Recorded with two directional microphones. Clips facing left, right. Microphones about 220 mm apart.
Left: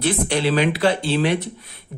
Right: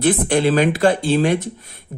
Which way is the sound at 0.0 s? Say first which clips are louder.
Right 4 dB; 50° right (ahead or behind).